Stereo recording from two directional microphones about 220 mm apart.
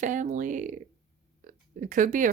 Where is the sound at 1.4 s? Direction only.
35° right (ahead or behind).